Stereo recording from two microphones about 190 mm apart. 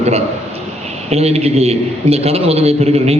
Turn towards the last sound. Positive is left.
turn(degrees=-35)  # may be behind; listen again after turning